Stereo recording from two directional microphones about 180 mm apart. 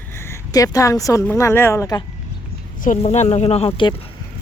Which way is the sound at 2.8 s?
40° left (ahead or behind).